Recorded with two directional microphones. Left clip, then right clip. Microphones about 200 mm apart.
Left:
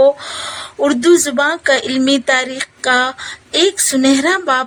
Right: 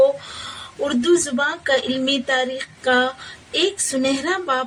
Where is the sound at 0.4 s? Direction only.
50° left (ahead or behind).